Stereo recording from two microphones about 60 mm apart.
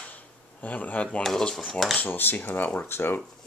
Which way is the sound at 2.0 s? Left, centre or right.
Left.